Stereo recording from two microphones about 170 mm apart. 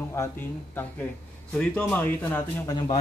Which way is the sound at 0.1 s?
15° left (ahead or behind).